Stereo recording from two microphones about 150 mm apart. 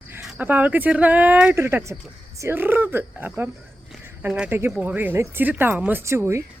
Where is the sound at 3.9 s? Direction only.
5° right (ahead or behind).